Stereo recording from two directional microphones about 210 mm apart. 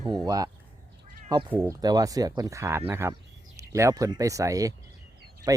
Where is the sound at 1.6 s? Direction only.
15° right (ahead or behind).